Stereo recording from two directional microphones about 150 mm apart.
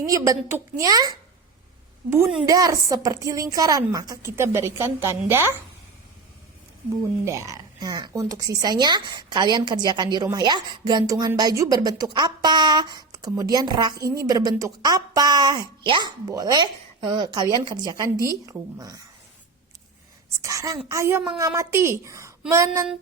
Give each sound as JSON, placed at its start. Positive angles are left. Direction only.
{"t": 0.0, "sound": "a woman's voice", "side_deg": -20}
{"t": 7.3, "sound": "speech", "side_deg": -20}
{"t": 20.4, "sound": "speech", "side_deg": -20}